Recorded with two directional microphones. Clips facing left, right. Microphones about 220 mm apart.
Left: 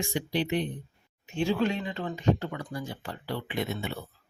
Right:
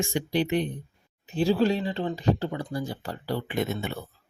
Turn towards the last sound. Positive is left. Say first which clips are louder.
# right 3 dB
turn(degrees=-45)  # may be behind; listen again after turning